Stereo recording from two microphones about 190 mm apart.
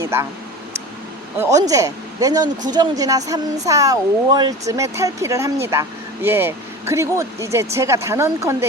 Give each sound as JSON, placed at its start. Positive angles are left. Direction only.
{"t": 0.0, "sound": "speech", "side_deg": -15}
{"t": 1.4, "sound": "speech", "side_deg": -15}